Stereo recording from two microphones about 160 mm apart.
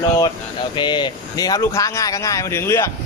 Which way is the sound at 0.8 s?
30° left (ahead or behind).